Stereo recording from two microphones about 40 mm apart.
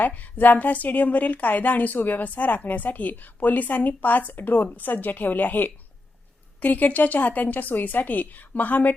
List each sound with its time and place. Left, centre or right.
0.1 s a woman's voice: left